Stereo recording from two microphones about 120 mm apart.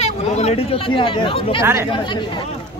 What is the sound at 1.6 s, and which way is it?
Speech, 20° right (ahead or behind).